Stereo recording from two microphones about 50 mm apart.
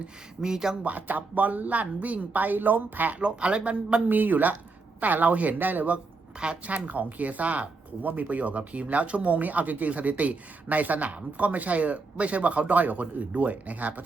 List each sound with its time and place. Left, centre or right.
0.4 s speech: centre
0.9 s speech: right
3.2 s speech: right
6.4 s speech: right